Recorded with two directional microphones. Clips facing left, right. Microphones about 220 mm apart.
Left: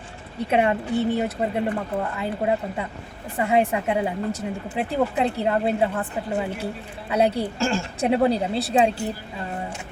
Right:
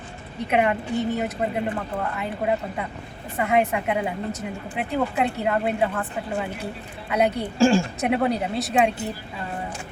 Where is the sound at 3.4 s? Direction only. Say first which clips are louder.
Left 1 dB; 30° left (ahead or behind).